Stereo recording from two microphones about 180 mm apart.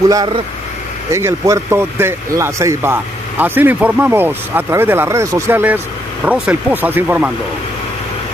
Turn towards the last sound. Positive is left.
turn(degrees=-10)  # may be behind; listen again after turning